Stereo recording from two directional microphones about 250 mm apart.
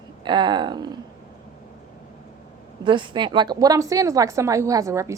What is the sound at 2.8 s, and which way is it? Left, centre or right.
A woman's voice, centre.